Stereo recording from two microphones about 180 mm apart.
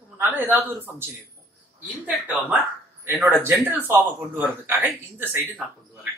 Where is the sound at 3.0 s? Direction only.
10° right (ahead or behind).